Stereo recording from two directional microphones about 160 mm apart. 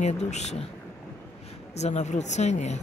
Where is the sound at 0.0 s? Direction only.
45° left (ahead or behind).